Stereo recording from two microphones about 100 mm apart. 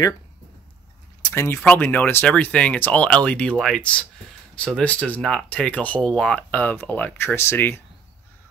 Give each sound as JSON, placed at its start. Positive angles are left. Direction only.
{"t": 1.3, "sound": "speech", "side_deg": 25}